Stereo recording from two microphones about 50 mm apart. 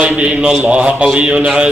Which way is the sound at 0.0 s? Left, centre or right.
Right.